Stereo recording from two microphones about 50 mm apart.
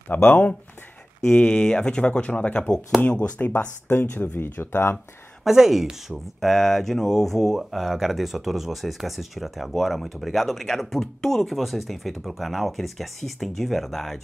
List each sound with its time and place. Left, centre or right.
0.1 s speech: left
1.3 s speech: left
3.3 s speech: left
5.4 s speech: centre
6.5 s speech: centre